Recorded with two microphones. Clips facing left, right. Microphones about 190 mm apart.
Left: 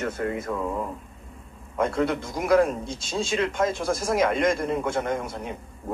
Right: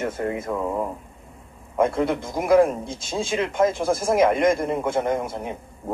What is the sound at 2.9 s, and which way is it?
Speech, 50° right (ahead or behind).